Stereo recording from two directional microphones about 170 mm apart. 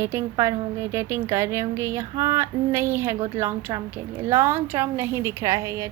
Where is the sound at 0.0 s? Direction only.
15° right (ahead or behind).